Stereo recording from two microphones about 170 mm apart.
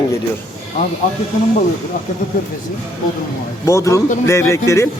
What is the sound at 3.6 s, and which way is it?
Speech, 15° left (ahead or behind).